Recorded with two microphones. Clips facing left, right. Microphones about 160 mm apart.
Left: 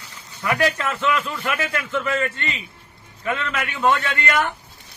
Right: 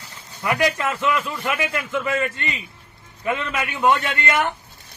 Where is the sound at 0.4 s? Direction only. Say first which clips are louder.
Even; 10° right (ahead or behind).